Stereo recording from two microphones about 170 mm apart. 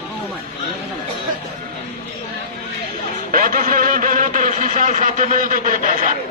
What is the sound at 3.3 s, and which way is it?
Speech, 55° right (ahead or behind).